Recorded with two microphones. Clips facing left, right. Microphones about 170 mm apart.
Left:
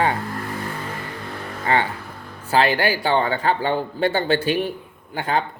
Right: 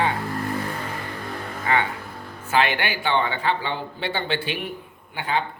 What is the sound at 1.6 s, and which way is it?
Speech, 35° left (ahead or behind).